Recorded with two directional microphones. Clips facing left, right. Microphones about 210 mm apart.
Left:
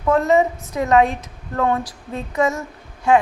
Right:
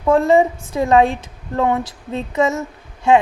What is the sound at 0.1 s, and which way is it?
Speech, 30° right (ahead or behind).